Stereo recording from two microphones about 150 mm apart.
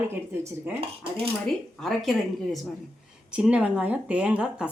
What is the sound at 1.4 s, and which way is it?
A woman's voice, centre (ahead or behind).